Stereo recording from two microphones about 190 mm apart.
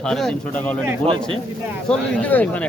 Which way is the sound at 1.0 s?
30° right (ahead or behind).